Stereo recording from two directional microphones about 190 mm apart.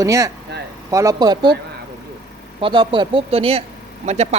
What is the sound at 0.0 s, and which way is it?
A man's voice, 15° right (ahead or behind).